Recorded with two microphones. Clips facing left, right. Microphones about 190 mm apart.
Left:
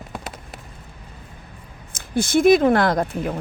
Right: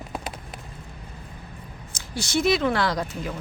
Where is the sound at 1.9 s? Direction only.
55° left (ahead or behind).